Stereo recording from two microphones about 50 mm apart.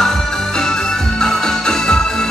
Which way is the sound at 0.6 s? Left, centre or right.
Centre.